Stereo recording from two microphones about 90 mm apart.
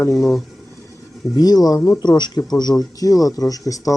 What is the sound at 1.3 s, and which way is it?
Speech, 45° left (ahead or behind).